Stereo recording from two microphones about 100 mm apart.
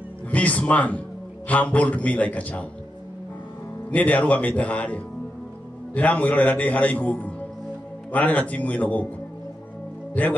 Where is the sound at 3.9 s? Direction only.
15° left (ahead or behind).